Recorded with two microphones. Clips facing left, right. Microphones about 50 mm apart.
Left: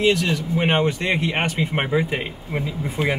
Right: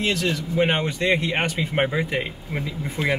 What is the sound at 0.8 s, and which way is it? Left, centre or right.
Speech, left.